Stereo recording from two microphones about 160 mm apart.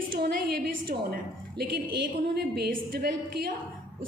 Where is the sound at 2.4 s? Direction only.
90° right; by 3.6 s 70° right (ahead or behind).